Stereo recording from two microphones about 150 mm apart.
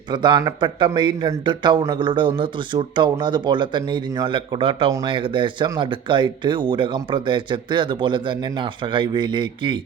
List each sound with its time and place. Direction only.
0.1 s speech: 30° right (ahead or behind)